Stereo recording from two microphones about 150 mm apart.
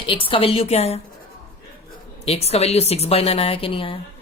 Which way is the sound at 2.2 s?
45° left (ahead or behind).